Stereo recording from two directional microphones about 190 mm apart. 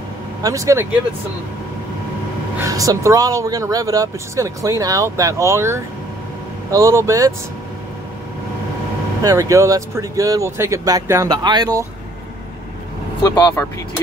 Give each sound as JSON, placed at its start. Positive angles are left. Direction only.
{"t": 0.4, "sound": "speech", "side_deg": -15}
{"t": 2.6, "sound": "speech", "side_deg": -20}
{"t": 9.2, "sound": "speech", "side_deg": -15}
{"t": 13.3, "sound": "speech", "side_deg": 20}